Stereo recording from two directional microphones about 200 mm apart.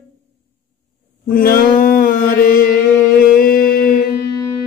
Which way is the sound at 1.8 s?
45° left (ahead or behind).